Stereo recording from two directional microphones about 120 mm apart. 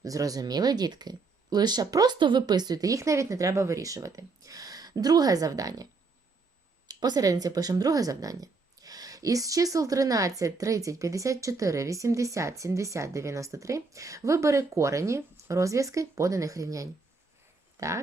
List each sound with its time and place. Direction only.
0.0 s speech: 30° right (ahead or behind)